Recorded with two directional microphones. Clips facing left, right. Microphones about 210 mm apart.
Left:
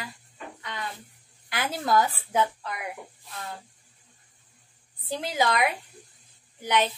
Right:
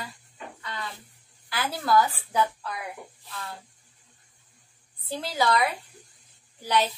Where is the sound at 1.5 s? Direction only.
20° left (ahead or behind).